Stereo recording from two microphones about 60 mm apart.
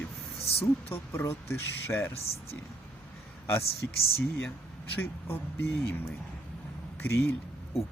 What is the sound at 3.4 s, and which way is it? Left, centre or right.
Speech, left.